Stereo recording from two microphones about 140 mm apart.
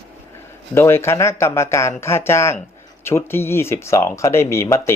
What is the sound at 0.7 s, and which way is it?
Speech, 20° left (ahead or behind).